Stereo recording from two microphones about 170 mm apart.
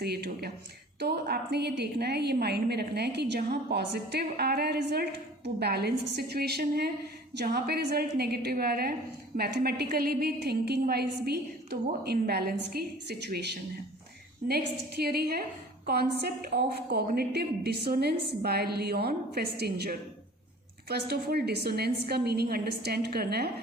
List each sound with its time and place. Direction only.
0.0 s a woman's voice: 70° right (ahead or behind)